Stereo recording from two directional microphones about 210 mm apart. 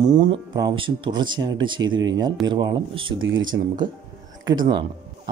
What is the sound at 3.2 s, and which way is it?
Speech, 65° right (ahead or behind).